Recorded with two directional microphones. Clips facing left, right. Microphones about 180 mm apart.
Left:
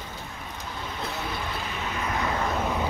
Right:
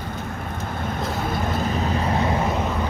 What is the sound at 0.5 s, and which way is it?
Vehicle, 55° right (ahead or behind).